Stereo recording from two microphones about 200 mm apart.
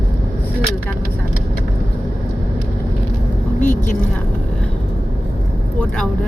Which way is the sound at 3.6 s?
40° left (ahead or behind).